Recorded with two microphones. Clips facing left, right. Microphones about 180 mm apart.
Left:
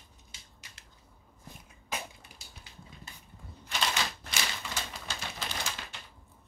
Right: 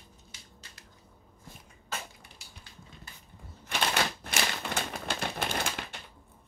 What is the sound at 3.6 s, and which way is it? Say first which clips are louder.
Typewriter: right 3 dB; 55° right (ahead or behind).